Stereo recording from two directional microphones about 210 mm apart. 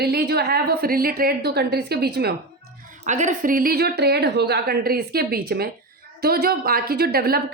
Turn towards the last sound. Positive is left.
turn(degrees=-45)  # may be behind; listen again after turning